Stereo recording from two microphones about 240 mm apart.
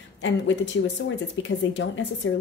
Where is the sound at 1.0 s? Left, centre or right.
Left.